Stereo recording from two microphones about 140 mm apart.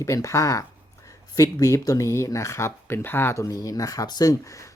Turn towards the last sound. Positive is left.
turn(degrees=25)  # may be behind; listen again after turning